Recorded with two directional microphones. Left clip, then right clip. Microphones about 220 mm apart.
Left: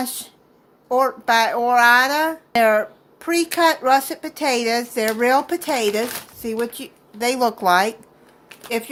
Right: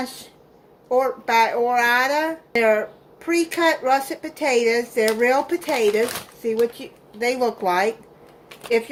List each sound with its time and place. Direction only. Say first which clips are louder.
0.9 s speech: left 2 dB; 40° left (ahead or behind)